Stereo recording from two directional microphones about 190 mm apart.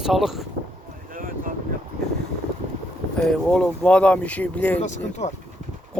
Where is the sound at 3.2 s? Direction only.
5° left (ahead or behind).